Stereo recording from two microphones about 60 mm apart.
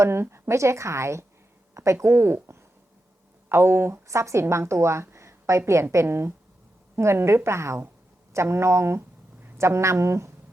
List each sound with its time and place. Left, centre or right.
0.0 s a woman's voice: right
4.0 s a woman's voice: right
5.1 s a sound: right
5.9 s a woman's voice: right
8.3 s a sound: right
9.6 s a woman's voice: right